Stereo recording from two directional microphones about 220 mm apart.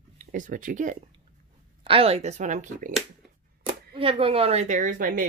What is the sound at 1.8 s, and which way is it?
A woman's voice, 25° right (ahead or behind).